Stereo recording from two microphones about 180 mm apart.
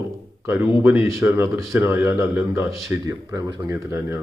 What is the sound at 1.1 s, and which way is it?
A man's voice, 15° right (ahead or behind).